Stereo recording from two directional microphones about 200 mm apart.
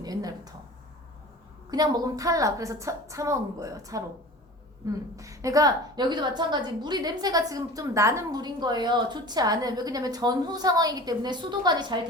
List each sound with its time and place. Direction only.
0.0 s a woman's voice: 20° right (ahead or behind)
1.7 s a woman's voice: 20° right (ahead or behind)
5.1 s a woman's voice: 15° right (ahead or behind)